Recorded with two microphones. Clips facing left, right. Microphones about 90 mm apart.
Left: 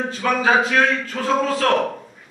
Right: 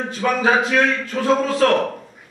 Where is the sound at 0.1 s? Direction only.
Centre (ahead or behind).